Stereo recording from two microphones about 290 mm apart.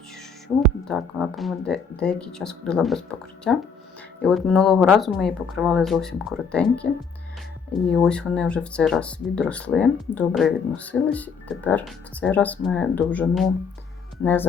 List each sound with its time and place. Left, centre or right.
0.4 s speech: centre
7.9 s speech: centre